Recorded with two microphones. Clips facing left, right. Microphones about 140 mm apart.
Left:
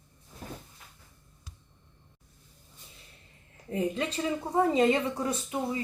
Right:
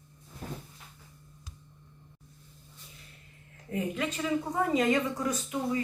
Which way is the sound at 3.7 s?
30° left (ahead or behind).